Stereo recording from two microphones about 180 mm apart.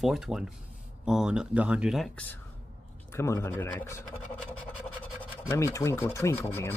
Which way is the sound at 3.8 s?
10° left (ahead or behind).